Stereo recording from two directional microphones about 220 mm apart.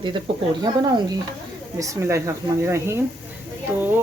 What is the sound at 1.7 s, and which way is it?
Speech, 15° right (ahead or behind).